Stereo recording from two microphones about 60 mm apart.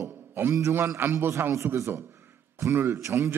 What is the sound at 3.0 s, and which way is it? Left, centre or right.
Speech, right.